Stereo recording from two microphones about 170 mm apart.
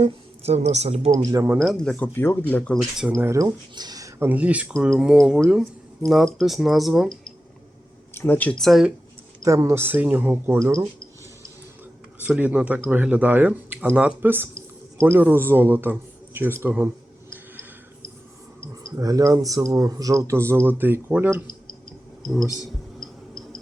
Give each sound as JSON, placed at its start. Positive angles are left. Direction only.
{"t": 0.0, "sound": "speech", "side_deg": -40}
{"t": 1.1, "sound": "speech", "side_deg": -20}
{"t": 1.5, "sound": "speech", "side_deg": 0}
{"t": 3.1, "sound": "speech", "side_deg": -15}
{"t": 8.1, "sound": "speech", "side_deg": 10}
{"t": 9.4, "sound": "speech", "side_deg": -20}
{"t": 12.2, "sound": "speech", "side_deg": -10}
{"t": 18.9, "sound": "speech", "side_deg": -20}